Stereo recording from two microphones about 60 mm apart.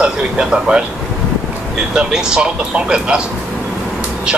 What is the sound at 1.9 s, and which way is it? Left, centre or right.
A man's voice, centre.